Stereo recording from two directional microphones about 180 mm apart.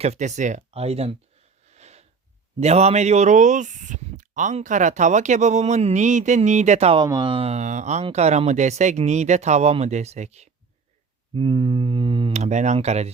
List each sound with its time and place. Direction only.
0.0 s speech: 40° right (ahead or behind)
1.7 s a sound: 40° right (ahead or behind)
2.6 s speech: 35° right (ahead or behind)
7.0 s speech: 25° right (ahead or behind)
11.3 s speech: 25° right (ahead or behind)